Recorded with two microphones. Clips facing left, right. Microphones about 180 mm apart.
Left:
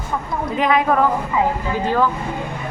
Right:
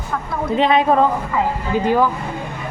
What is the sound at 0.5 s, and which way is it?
A woman's voice, 25° right (ahead or behind).